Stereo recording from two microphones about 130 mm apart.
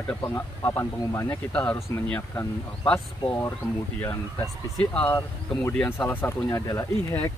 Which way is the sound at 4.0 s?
15° left (ahead or behind).